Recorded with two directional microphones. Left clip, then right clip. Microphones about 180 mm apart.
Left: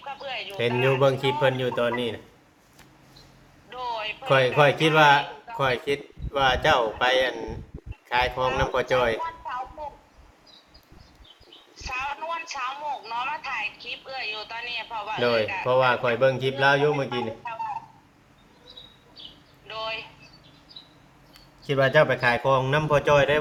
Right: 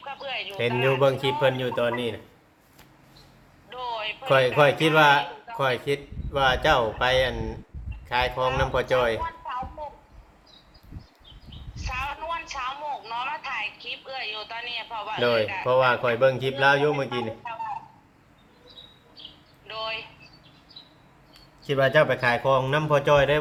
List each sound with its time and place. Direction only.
0.0 s speech: 15° right (ahead or behind)
0.9 s speech: centre (ahead or behind)
3.7 s a man's voice: 5° right (ahead or behind)
11.7 s a sound: 10° right (ahead or behind)
19.6 s a sound: 10° right (ahead or behind)
21.6 s speech: 5° right (ahead or behind)